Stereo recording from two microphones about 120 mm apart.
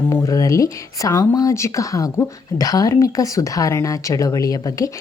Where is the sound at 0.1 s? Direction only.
30° left (ahead or behind).